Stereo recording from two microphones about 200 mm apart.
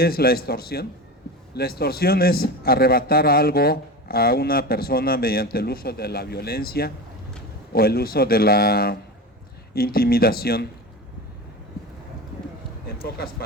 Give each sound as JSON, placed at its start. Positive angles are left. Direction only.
{"t": 0.0, "sound": "a man's voice", "side_deg": 50}
{"t": 13.0, "sound": "a man's voice", "side_deg": 50}